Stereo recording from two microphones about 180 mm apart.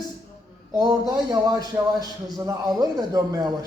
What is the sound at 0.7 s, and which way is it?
A man's voice, 20° right (ahead or behind).